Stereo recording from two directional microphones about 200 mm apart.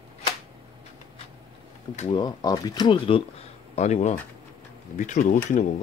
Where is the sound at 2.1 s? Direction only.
20° left (ahead or behind); by 5.3 s 40° left (ahead or behind).